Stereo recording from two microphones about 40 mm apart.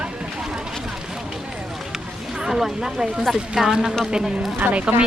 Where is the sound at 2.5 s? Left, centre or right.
Centre.